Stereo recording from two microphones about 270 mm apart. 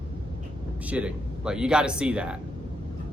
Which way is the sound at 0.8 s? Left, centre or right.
Centre.